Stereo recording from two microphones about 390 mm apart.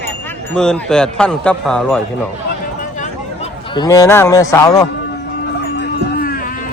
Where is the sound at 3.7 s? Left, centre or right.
Centre.